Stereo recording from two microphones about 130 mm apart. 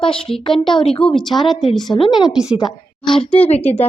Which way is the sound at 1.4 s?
Centre (ahead or behind).